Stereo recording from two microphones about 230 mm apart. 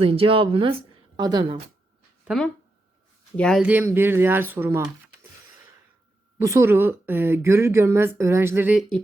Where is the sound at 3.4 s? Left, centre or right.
Centre.